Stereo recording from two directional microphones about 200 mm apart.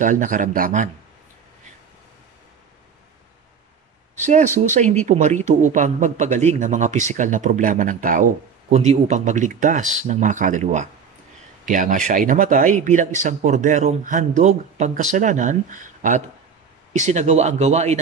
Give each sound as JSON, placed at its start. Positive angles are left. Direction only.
{"t": 0.0, "sound": "a man's voice", "side_deg": -40}
{"t": 4.2, "sound": "a man's voice", "side_deg": -35}